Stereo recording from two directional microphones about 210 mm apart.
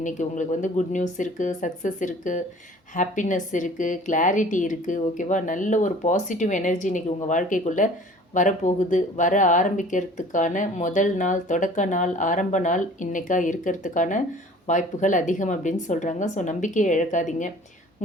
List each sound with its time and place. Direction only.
0.0 s speech: 35° left (ahead or behind)